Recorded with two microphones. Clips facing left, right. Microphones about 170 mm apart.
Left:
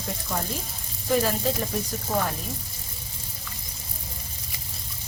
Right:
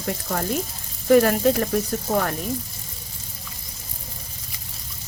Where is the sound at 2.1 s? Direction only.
45° right (ahead or behind).